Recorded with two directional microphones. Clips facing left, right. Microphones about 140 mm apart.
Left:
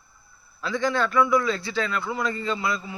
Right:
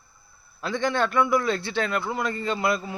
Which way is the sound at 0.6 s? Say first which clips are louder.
Even; 55° right (ahead or behind).